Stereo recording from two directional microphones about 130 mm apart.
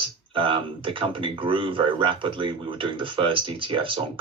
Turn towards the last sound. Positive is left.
turn(degrees=-40)  # may be behind; listen again after turning